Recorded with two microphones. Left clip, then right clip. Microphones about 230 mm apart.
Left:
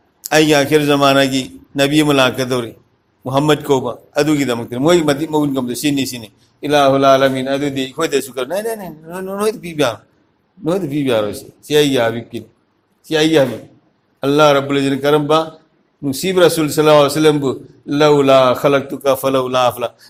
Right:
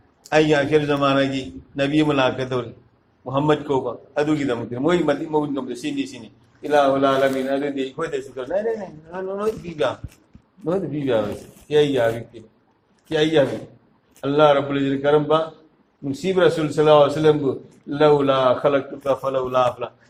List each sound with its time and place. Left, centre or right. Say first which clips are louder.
0.2 s a man's voice: left 5 dB; left